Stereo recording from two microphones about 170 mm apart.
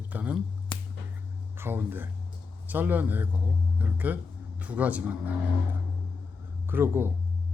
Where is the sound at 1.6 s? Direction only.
10° right (ahead or behind).